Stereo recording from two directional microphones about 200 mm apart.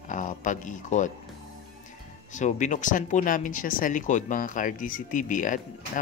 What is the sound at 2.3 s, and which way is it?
Speech, 40° left (ahead or behind).